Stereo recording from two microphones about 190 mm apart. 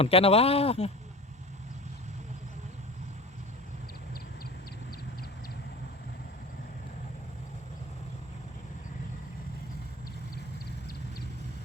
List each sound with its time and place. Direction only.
0.0 s speech: 30° left (ahead or behind)